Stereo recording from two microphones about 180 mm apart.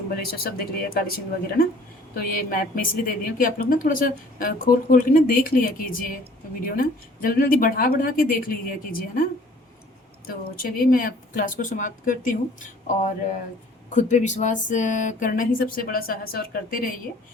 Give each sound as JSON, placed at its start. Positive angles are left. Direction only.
{"t": 0.3, "sound": "speech", "side_deg": 55}
{"t": 10.2, "sound": "speech", "side_deg": 55}
{"t": 13.9, "sound": "speech", "side_deg": 40}